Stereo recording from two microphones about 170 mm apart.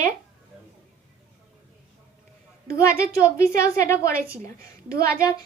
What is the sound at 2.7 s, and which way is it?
A woman's voice, 20° left (ahead or behind).